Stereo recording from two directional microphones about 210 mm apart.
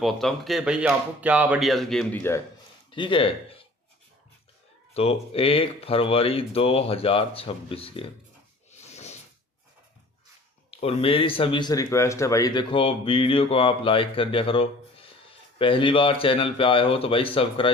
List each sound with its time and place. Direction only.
0.0 s speech: centre (ahead or behind)
2.9 s speech: 25° left (ahead or behind)
4.9 s speech: 30° left (ahead or behind)
8.7 s a sound: 30° left (ahead or behind)
10.7 s speech: 30° left (ahead or behind)